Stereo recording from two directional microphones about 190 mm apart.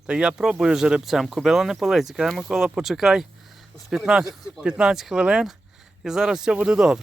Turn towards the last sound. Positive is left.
turn(degrees=-5)  # may be behind; listen again after turning